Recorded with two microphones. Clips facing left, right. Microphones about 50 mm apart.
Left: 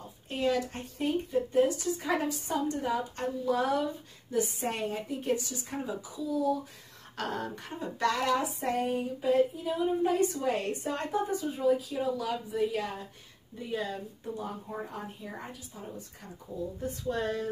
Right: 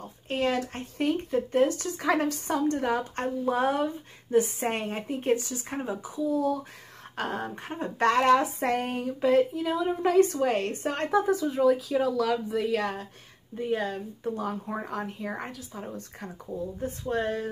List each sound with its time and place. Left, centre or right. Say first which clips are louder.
0.3 s speech: right 2 dB; right
1.0 s a sound: right 3 dB; right
3.4 s speech: right 2 dB; right
7.2 s a sound: right 3 dB; right
11.1 s speech: right 8 dB; right
13.6 s speech: right 5 dB; right
14.3 s speech: right 4 dB; right
16.5 s a sound: right 2 dB; right
17.1 s speech: right 3 dB; right